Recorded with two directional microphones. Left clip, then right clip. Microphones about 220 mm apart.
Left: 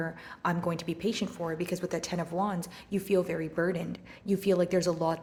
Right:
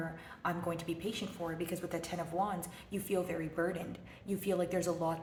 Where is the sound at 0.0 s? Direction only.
40° left (ahead or behind).